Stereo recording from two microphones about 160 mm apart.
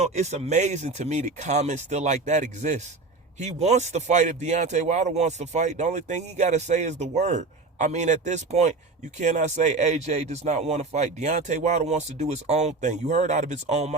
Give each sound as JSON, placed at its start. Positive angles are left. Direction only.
{"t": 0.0, "sound": "a man's voice", "side_deg": -45}